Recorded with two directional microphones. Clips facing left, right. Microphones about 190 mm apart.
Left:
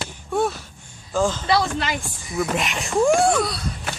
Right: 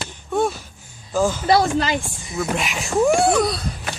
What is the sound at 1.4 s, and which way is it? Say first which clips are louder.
Speech: right 4 dB; 45° right (ahead or behind).